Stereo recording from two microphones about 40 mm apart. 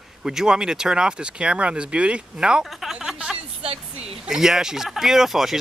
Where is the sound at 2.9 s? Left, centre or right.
Centre.